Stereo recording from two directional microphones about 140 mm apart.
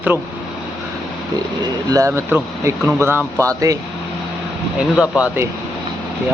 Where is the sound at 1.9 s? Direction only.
20° right (ahead or behind).